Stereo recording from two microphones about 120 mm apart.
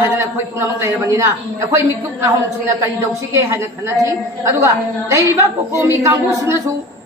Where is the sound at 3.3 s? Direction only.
25° right (ahead or behind).